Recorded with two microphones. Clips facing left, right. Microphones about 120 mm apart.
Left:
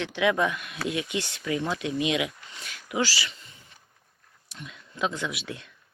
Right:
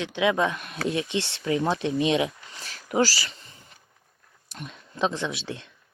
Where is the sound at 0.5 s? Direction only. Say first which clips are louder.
Right 3 dB; 40° right (ahead or behind).